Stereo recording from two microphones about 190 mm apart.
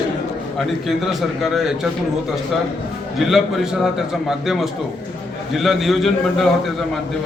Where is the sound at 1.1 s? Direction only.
Centre (ahead or behind).